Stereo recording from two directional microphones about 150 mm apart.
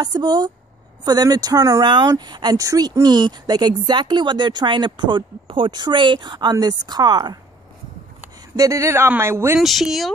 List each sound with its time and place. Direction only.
0.0 s speech: 25° right (ahead or behind)
8.5 s speech: 20° right (ahead or behind)
9.6 s speech: centre (ahead or behind)